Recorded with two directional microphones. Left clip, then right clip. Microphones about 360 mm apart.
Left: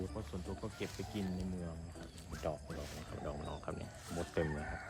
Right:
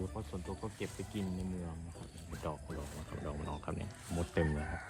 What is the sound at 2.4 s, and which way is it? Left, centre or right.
Speech, centre.